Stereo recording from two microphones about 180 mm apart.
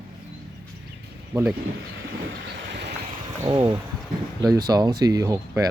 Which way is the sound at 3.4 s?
25° right (ahead or behind).